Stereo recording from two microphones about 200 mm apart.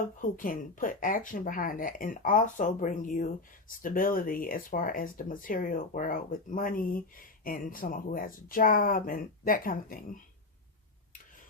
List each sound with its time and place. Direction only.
0.2 s speech: 40° left (ahead or behind)